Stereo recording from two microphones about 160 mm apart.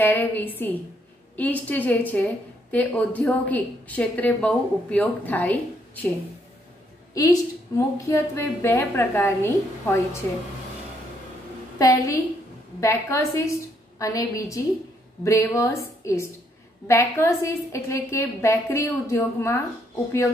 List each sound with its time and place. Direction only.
0.0 s a woman's voice: 10° left (ahead or behind)
7.2 s a woman's voice: 20° left (ahead or behind)
11.8 s a woman's voice: 20° left (ahead or behind)